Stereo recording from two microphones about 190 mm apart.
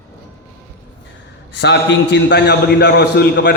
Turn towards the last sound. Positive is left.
turn(degrees=60)  # may be behind; listen again after turning